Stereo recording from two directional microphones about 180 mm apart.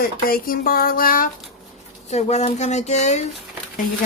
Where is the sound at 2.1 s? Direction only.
40° left (ahead or behind).